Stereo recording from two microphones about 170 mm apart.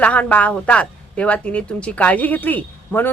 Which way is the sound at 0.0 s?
10° left (ahead or behind).